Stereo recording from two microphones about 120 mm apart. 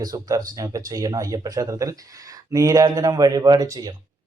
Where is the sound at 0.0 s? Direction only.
30° right (ahead or behind).